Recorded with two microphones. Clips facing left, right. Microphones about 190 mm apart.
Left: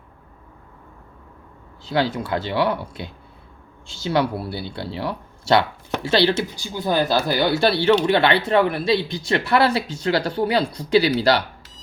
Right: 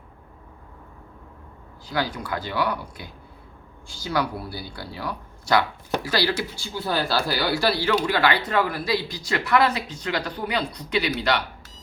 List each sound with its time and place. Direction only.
1.8 s speech: 25° left (ahead or behind)